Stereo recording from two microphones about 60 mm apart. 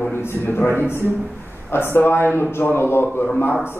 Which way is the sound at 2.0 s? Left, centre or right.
Left.